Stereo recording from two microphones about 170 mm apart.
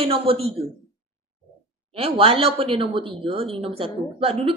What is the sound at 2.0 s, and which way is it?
A woman's voice, 35° right (ahead or behind).